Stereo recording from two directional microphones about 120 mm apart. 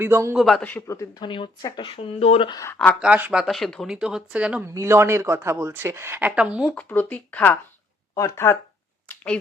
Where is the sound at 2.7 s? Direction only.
10° left (ahead or behind).